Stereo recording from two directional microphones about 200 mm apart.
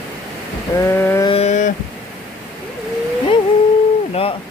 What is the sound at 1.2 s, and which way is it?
Speech, 30° left (ahead or behind).